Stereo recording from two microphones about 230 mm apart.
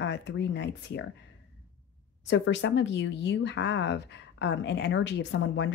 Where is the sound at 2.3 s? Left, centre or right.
Left.